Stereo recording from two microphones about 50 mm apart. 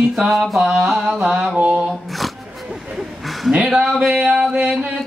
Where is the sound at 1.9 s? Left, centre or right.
Centre.